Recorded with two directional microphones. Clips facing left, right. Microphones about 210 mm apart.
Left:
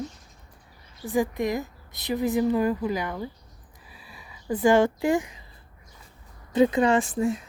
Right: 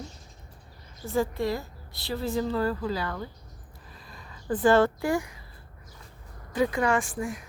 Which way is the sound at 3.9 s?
10° left (ahead or behind).